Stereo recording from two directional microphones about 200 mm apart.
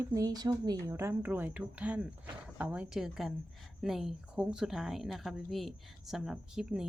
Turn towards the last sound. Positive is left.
turn(degrees=0)  # may be behind; listen again after turning